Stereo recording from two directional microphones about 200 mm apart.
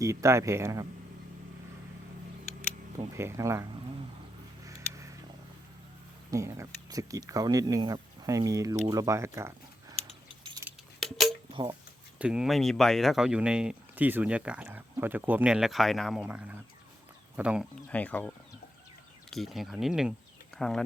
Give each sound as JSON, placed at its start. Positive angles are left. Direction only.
{"t": 0.0, "sound": "speech", "side_deg": -15}
{"t": 3.2, "sound": "speech", "side_deg": -15}
{"t": 4.6, "sound": "a sound", "side_deg": -15}
{"t": 6.3, "sound": "speech", "side_deg": -15}
{"t": 11.0, "sound": "a sound", "side_deg": 0}
{"t": 11.5, "sound": "speech", "side_deg": -25}
{"t": 12.2, "sound": "speech", "side_deg": -5}
{"t": 17.8, "sound": "speech", "side_deg": 5}